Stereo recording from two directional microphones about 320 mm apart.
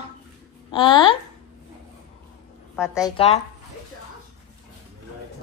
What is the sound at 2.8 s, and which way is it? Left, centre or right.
Speech, centre.